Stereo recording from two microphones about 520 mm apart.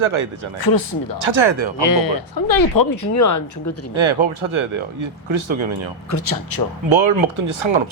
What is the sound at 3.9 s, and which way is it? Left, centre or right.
Speech, right.